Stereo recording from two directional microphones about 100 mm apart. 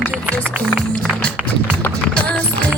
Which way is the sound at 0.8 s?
10° left (ahead or behind).